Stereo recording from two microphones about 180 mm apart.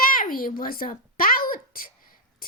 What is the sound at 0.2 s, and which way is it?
Speech, 50° left (ahead or behind).